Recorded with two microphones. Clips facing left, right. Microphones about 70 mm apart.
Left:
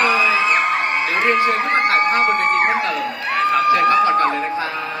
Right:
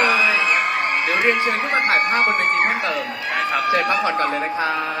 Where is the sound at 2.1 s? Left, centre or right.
Left.